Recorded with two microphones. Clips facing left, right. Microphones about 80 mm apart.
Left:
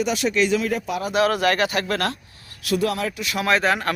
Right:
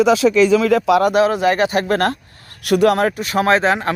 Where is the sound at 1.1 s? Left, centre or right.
Right.